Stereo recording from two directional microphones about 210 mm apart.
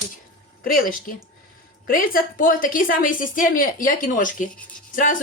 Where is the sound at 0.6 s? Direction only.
40° left (ahead or behind).